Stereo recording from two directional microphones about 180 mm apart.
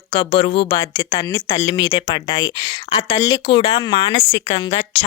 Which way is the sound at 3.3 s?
85° left.